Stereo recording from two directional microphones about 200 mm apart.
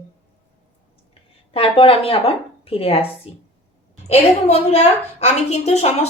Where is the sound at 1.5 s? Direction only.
25° left (ahead or behind).